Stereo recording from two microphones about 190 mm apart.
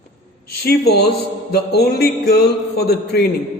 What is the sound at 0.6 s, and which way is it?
Mantra, 55° left (ahead or behind).